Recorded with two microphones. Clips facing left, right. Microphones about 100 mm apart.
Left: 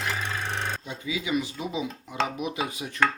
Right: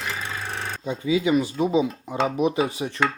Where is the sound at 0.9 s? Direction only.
30° right (ahead or behind).